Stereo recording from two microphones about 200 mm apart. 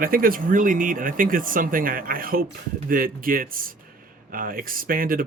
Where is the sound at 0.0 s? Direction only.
45° right (ahead or behind).